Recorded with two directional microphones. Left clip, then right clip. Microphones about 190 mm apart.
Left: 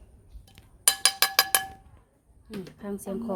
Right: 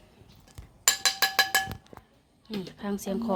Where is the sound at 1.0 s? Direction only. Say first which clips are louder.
Left 2 dB; 30° left (ahead or behind).